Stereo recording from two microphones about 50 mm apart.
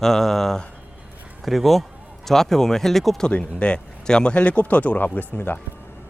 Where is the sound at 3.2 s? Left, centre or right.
Left.